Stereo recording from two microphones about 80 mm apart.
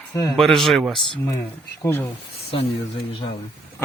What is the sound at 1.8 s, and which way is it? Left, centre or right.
Speech, left.